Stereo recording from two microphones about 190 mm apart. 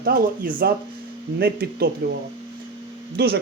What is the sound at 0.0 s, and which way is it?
Speech, 50° right (ahead or behind).